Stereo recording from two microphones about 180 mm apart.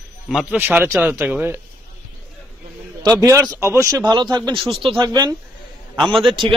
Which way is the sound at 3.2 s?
20° right (ahead or behind).